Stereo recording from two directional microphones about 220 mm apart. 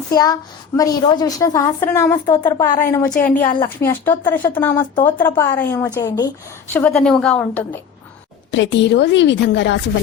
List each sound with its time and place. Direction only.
0.1 s a woman's voice: 15° left (ahead or behind)
6.7 s a woman's voice: 5° left (ahead or behind)
8.5 s a woman's voice: 55° left (ahead or behind)